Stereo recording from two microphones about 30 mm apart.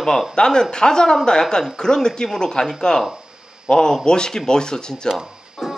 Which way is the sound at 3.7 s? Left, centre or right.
Left.